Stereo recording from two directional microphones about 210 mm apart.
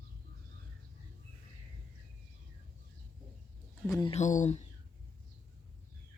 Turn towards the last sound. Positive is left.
turn(degrees=35)  # may be behind; listen again after turning